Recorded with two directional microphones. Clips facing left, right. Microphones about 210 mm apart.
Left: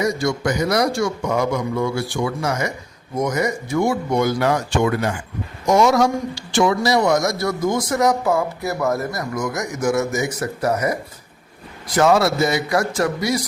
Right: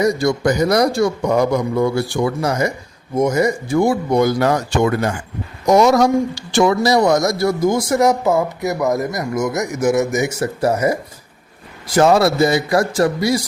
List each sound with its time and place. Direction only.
0.0 s a man's voice: 35° right (ahead or behind)
11.9 s a man's voice: 35° right (ahead or behind)